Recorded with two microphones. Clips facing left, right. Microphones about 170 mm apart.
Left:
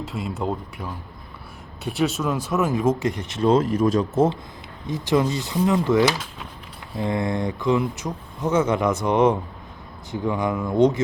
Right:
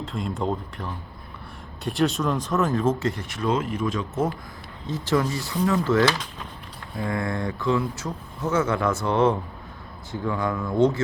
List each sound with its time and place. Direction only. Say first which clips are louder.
0.0 s speech: even; 5° left (ahead or behind); by 4.2 s 40° left (ahead or behind)
4.9 s speech: left 3 dB; 15° left (ahead or behind)